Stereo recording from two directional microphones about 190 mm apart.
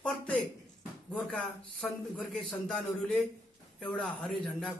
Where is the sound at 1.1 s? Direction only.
5° left (ahead or behind).